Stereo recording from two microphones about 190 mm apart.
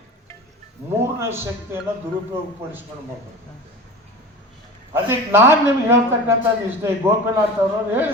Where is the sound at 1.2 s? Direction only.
15° right (ahead or behind).